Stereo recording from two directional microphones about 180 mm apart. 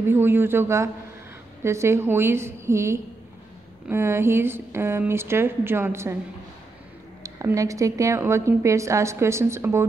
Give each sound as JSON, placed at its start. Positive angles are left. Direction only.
{"t": 0.0, "sound": "a woman's voice", "side_deg": -10}
{"t": 7.2, "sound": "a woman's voice", "side_deg": -15}